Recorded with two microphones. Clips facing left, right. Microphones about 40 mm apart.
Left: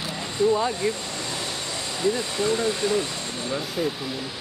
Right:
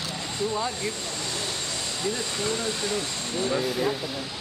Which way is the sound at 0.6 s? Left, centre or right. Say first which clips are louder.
Left 5 dB; centre.